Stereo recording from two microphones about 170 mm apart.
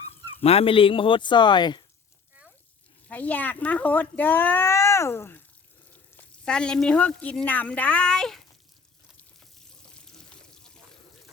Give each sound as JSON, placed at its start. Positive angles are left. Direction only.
{"t": 0.4, "sound": "speech", "side_deg": 35}
{"t": 3.1, "sound": "speech", "side_deg": 10}
{"t": 9.9, "sound": "pour", "side_deg": 5}